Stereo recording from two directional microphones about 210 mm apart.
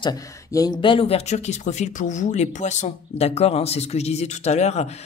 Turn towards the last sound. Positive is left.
turn(degrees=30)  # may be behind; listen again after turning